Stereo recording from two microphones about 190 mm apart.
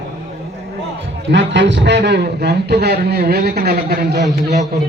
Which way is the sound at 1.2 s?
70° right (ahead or behind).